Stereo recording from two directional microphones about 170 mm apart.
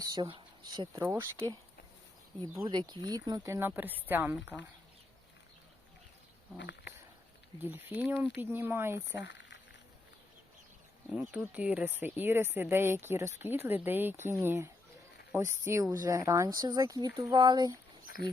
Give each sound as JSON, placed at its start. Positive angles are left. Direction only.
{"t": 0.0, "sound": "speech", "side_deg": -25}
{"t": 1.0, "sound": "speech", "side_deg": -15}
{"t": 2.6, "sound": "speech", "side_deg": -25}
{"t": 6.6, "sound": "cat", "side_deg": 90}
{"t": 7.6, "sound": "speech", "side_deg": -10}
{"t": 9.0, "sound": "speech", "side_deg": 90}
{"t": 11.1, "sound": "speech", "side_deg": -5}
{"t": 18.0, "sound": "a sound", "side_deg": 60}